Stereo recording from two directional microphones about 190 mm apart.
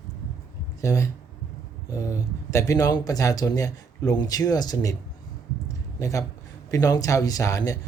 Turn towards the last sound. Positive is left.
turn(degrees=15)  # may be behind; listen again after turning